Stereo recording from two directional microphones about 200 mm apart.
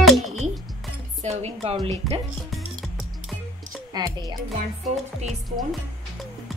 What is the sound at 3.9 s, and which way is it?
Speech, 20° right (ahead or behind).